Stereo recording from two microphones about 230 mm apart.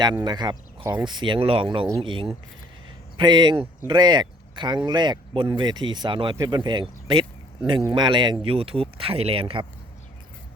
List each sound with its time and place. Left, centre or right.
0.0 s speech: centre